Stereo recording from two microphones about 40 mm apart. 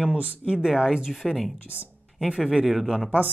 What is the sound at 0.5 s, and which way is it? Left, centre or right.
Speech, centre.